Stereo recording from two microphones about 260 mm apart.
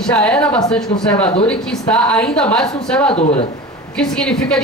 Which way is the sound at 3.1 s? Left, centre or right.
Left.